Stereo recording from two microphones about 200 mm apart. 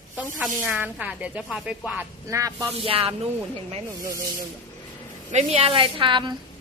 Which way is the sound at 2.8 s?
30° right (ahead or behind).